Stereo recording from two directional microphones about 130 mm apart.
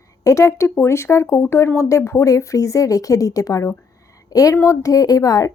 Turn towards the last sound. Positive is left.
turn(degrees=30)  # may be behind; listen again after turning